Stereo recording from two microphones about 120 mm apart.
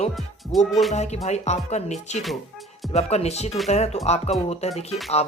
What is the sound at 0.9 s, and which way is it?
Speech, 65° left (ahead or behind).